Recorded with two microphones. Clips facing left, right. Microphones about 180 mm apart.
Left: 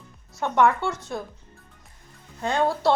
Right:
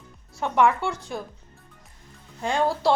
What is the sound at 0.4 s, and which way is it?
Speech, 10° right (ahead or behind).